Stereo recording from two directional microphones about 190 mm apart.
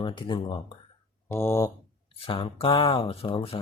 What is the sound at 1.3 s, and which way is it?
Speech, 15° left (ahead or behind).